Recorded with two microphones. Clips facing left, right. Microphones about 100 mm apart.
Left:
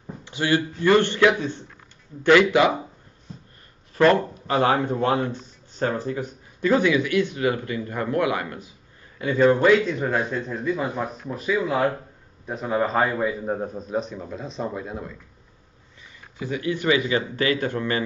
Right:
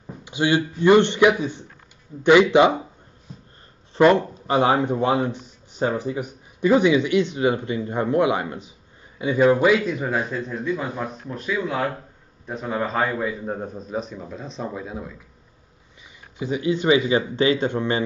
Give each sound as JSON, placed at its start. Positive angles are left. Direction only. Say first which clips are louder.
{"t": 0.0, "sound": "a man's voice", "louder": "right 4 dB", "side_deg": -15}
{"t": 3.9, "sound": "speech", "louder": "right 2 dB", "side_deg": -15}
{"t": 16.3, "sound": "speech", "louder": "right 3 dB", "side_deg": -20}